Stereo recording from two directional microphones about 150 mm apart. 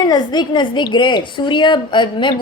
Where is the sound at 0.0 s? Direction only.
30° left (ahead or behind).